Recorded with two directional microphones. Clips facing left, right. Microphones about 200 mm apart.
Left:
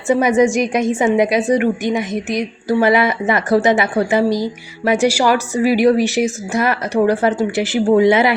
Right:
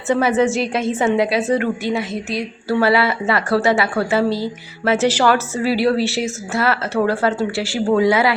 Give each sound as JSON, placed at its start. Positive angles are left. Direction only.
{"t": 0.1, "sound": "a woman's voice", "side_deg": 15}